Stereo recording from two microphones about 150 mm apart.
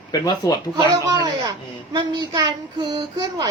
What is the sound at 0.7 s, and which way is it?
A child's voice, 25° right (ahead or behind).